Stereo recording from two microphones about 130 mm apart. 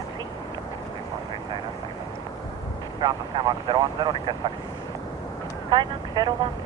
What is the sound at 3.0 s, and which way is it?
Speech, 35° right (ahead or behind).